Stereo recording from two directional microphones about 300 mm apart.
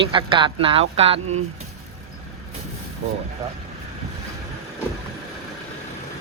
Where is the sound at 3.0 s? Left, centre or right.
Right.